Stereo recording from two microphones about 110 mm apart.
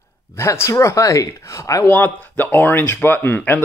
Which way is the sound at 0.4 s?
25° left (ahead or behind).